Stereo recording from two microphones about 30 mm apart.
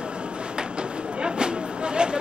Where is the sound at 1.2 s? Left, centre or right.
Right.